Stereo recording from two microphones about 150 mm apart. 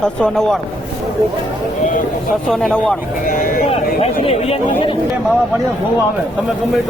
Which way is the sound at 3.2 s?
70° left (ahead or behind).